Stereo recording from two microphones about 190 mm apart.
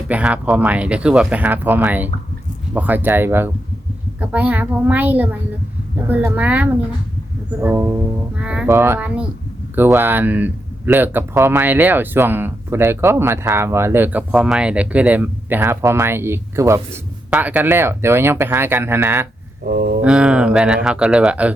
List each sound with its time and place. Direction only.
0.1 s speech: 5° right (ahead or behind)
19.6 s speech: 45° right (ahead or behind)
20.0 s speech: 5° right (ahead or behind)